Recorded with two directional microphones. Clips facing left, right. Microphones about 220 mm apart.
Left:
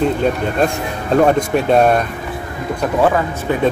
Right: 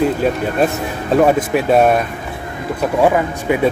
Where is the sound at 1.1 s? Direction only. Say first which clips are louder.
Even; 5° right (ahead or behind).